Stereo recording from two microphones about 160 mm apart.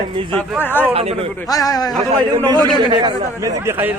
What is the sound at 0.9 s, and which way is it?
Speech, 35° right (ahead or behind).